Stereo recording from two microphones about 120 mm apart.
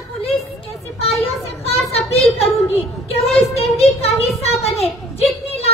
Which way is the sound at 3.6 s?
60° left (ahead or behind).